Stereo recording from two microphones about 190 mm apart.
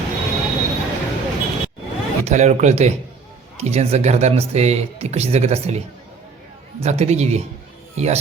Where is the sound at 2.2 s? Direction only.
35° right (ahead or behind).